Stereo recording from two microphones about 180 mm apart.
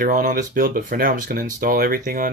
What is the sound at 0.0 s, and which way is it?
Speech, 50° right (ahead or behind).